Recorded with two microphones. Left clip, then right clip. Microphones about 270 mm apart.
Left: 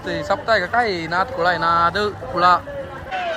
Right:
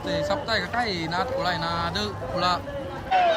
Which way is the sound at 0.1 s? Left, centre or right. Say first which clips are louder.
Left 6 dB; centre.